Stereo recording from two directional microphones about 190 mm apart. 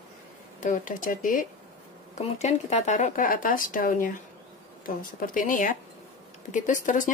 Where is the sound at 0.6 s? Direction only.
45° left (ahead or behind).